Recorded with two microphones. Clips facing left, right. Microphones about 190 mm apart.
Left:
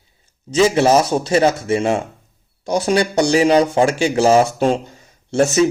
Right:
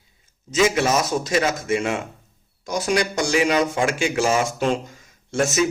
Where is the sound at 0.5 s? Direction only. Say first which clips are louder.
Left 6 dB; 30° left (ahead or behind).